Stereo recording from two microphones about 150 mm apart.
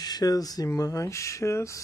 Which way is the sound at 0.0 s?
25° left (ahead or behind).